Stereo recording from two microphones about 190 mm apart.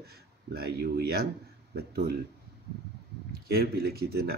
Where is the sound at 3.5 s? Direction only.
55° right (ahead or behind).